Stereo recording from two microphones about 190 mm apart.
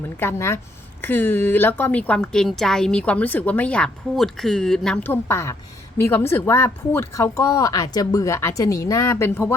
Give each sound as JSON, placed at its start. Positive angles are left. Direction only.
{"t": 0.2, "sound": "a woman's voice", "side_deg": 15}